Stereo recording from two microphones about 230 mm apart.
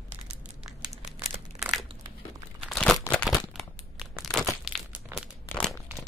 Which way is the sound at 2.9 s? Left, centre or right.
Centre.